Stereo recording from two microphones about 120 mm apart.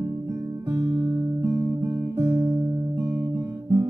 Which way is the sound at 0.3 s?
25° right (ahead or behind).